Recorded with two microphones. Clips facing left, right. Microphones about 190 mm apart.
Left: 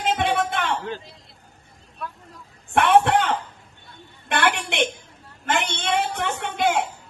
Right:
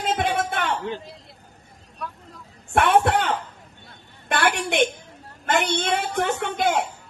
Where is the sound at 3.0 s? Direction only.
40° right (ahead or behind).